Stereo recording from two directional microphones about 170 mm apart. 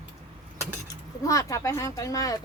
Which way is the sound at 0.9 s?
20° left (ahead or behind).